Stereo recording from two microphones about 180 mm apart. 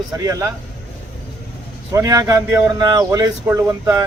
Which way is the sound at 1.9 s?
15° right (ahead or behind).